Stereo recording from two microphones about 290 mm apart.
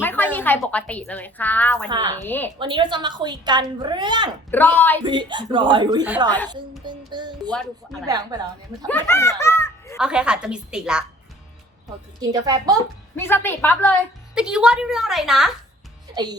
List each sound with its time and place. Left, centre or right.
0.0 s a woman's voice: centre
1.9 s a woman's voice: centre
2.2 s a woman's voice: centre
2.6 s a woman's voice: centre
4.5 s a woman's voice: centre
5.0 s a woman's voice: centre
8.9 s a child's voice: centre
10.0 s a woman's voice: centre
12.2 s a woman's voice: centre
13.1 s a woman's voice: centre
16.1 s a woman's voice: centre